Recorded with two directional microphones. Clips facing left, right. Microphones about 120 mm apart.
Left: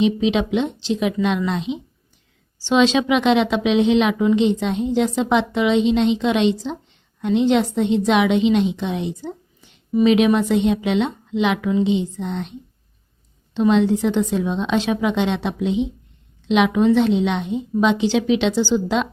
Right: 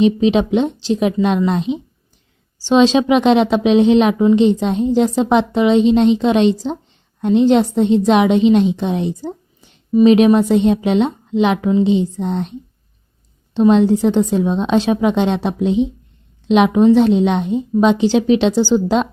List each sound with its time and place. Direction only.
0.0 s a woman's voice: 40° right (ahead or behind)